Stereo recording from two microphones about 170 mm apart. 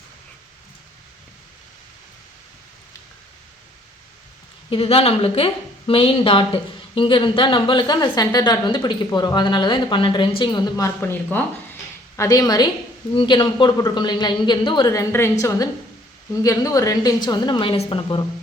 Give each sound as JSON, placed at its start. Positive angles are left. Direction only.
{"t": 4.7, "sound": "speech", "side_deg": 35}
{"t": 15.1, "sound": "a woman's voice", "side_deg": 15}